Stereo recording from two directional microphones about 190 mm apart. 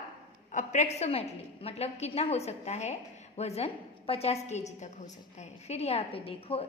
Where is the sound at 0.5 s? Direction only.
40° left (ahead or behind).